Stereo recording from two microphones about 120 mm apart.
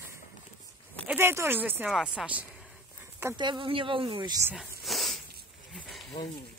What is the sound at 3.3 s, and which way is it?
Speech, 40° right (ahead or behind).